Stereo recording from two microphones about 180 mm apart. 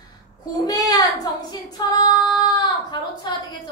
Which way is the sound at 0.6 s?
20° left (ahead or behind).